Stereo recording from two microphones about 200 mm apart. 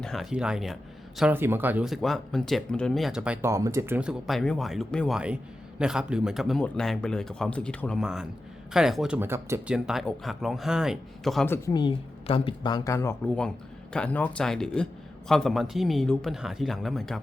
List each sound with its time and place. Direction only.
0.0 s speech: centre (ahead or behind)
11.5 s speech: 15° left (ahead or behind); by 17.2 s centre (ahead or behind)